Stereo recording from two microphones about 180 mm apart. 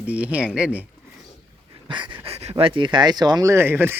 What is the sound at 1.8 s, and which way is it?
Dog, 25° right (ahead or behind).